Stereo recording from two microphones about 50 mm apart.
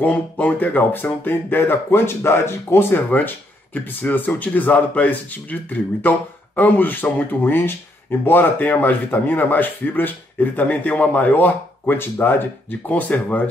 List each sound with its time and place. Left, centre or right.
0.0 s speech: left
12.8 s speech: left